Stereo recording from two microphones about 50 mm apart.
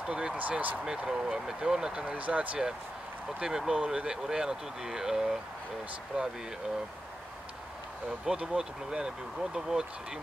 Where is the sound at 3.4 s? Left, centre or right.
Centre.